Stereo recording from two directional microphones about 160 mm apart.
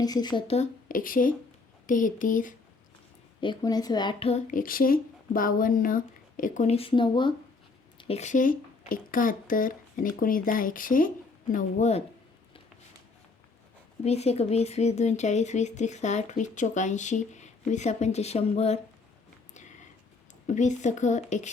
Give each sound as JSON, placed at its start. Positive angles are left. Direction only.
{"t": 0.0, "sound": "a woman's voice", "side_deg": 25}
{"t": 0.5, "sound": "a woman's voice", "side_deg": 50}
{"t": 3.4, "sound": "a woman's voice", "side_deg": 25}
{"t": 4.3, "sound": "speech", "side_deg": 45}
{"t": 4.6, "sound": "a woman's voice", "side_deg": 65}
{"t": 11.5, "sound": "speech", "side_deg": 45}
{"t": 14.0, "sound": "speech", "side_deg": 40}
{"t": 20.5, "sound": "speech", "side_deg": 50}